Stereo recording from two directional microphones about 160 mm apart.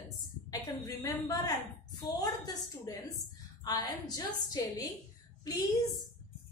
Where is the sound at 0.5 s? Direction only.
20° left (ahead or behind).